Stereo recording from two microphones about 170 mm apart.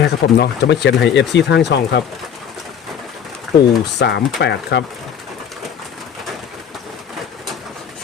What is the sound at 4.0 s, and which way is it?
Speech, 80° left.